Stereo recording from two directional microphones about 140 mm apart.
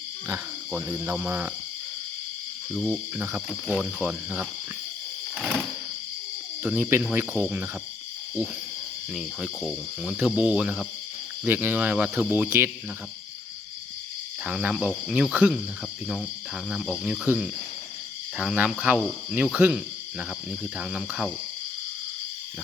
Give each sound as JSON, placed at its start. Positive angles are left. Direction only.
{"t": 0.3, "sound": "speech", "side_deg": -20}
{"t": 2.7, "sound": "speech", "side_deg": -5}
{"t": 6.6, "sound": "speech", "side_deg": -10}
{"t": 9.1, "sound": "speech", "side_deg": -5}
{"t": 14.4, "sound": "speech", "side_deg": -10}
{"t": 16.6, "sound": "speech", "side_deg": -5}